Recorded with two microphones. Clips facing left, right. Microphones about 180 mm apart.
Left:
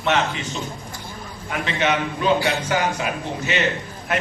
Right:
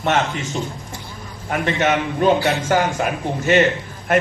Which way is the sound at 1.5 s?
50° right (ahead or behind).